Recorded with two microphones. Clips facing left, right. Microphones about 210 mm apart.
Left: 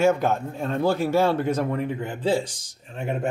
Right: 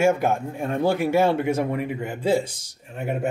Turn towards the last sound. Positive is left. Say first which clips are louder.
# right 1 dB
turn(degrees=-5)  # may be behind; listen again after turning